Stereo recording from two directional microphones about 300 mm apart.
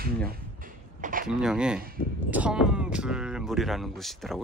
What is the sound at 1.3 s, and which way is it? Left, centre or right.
Speech, centre.